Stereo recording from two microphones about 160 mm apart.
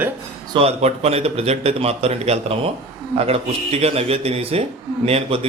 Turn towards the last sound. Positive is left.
turn(degrees=-40)  # may be behind; listen again after turning